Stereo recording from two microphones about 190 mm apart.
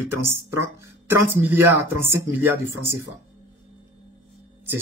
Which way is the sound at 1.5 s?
10° right (ahead or behind).